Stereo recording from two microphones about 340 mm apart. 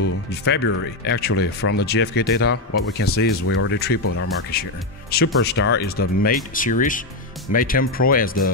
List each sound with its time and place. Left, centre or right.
0.0 s speech: left
4.0 s speech: left
4.5 s speech: left